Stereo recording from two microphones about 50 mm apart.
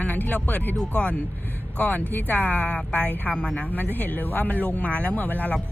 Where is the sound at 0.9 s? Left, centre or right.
Left.